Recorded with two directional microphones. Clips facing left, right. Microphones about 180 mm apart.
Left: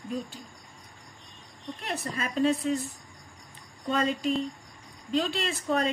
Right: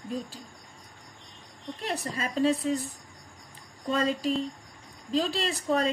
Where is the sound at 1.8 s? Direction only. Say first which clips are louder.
Right 1 dB; 30° right (ahead or behind).